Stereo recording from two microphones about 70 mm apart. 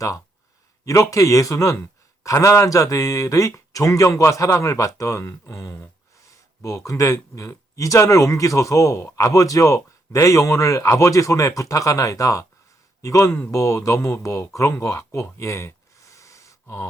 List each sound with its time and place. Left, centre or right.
0.9 s speech: left